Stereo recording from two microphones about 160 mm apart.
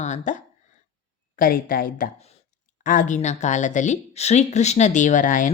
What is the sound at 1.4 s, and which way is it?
Speech, 60° left (ahead or behind).